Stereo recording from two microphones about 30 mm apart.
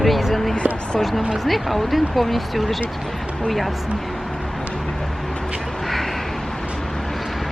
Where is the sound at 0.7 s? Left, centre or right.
Right.